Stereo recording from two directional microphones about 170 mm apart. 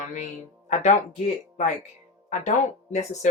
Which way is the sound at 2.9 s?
45° left (ahead or behind).